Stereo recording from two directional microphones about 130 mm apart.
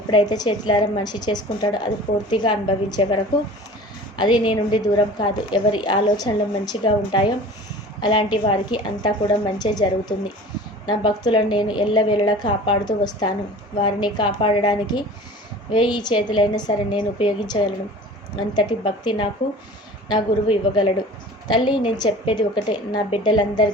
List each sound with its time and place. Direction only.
0.1 s a woman's voice: 35° left (ahead or behind)
4.2 s a woman's voice: 35° left (ahead or behind)